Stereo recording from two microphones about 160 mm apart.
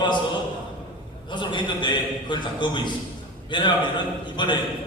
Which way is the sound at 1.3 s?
30° left (ahead or behind).